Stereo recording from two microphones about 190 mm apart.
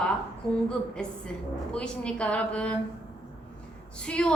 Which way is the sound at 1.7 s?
5° left (ahead or behind).